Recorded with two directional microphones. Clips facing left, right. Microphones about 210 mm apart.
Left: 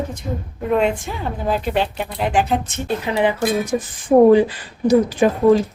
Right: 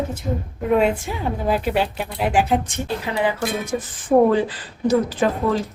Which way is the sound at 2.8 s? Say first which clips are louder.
Left 3 dB; 20° left (ahead or behind).